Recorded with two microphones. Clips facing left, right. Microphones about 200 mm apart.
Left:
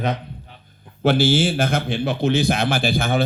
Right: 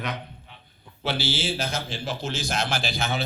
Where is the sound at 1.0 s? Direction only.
50° left (ahead or behind).